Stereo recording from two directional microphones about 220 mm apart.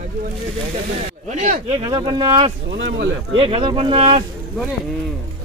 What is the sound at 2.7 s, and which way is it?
Speech, 55° right (ahead or behind).